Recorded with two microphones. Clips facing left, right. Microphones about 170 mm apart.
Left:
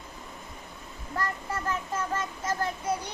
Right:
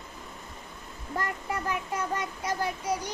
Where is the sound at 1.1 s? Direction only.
20° right (ahead or behind).